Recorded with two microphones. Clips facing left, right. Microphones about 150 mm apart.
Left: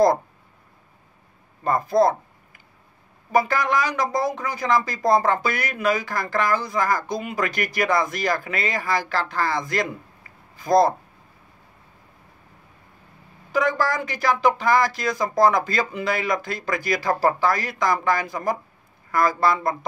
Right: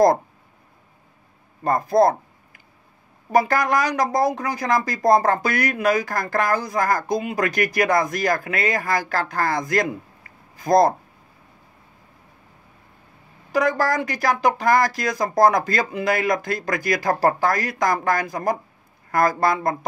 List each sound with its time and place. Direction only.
1.6 s a sound: 40° right (ahead or behind)
3.3 s speech: 40° right (ahead or behind)
13.5 s speech: 40° right (ahead or behind)